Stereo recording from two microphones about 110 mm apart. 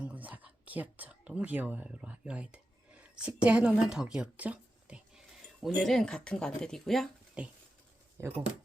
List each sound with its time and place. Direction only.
0.0 s whispering: 15° right (ahead or behind)
1.3 s speech: 10° right (ahead or behind)
5.6 s speech: centre (ahead or behind)
7.4 s speech: 10° right (ahead or behind)
8.2 s speech: 25° right (ahead or behind)